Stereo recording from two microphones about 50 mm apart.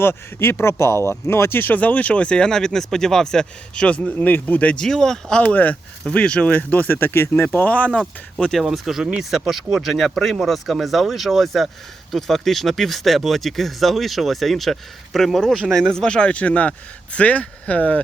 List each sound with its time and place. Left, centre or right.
0.0 s speech: left; by 3.8 s centre
3.8 s speech: left
4.3 s speech: left
4.8 s speech: centre
5.4 s speech: left
7.6 s speech: left
7.9 s speech: centre
8.6 s speech: centre; by 18.0 s left